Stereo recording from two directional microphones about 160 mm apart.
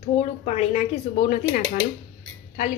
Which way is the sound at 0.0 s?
40° left (ahead or behind).